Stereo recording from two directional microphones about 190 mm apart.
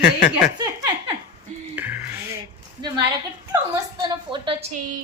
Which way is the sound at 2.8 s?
25° right (ahead or behind).